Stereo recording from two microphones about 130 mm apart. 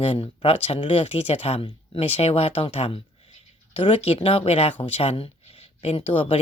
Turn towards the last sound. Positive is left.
turn(degrees=45)  # may be behind; listen again after turning